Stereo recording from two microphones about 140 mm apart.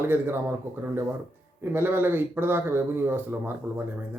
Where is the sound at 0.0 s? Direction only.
15° right (ahead or behind).